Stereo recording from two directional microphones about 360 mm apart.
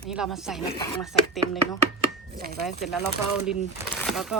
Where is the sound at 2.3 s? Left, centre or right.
Right.